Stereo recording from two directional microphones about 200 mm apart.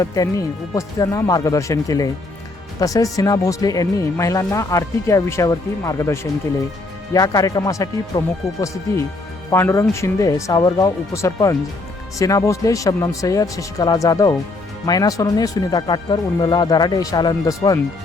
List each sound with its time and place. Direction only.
0.0 s speech: 15° left (ahead or behind)
9.5 s speech: 15° left (ahead or behind)